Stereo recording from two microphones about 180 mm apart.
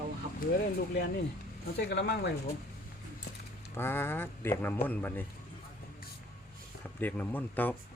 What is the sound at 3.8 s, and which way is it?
A man's voice, 10° left (ahead or behind).